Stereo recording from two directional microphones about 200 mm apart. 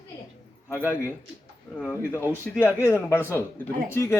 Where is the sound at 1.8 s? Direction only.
10° left (ahead or behind).